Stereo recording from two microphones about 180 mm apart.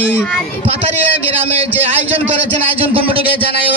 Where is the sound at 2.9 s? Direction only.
30° right (ahead or behind).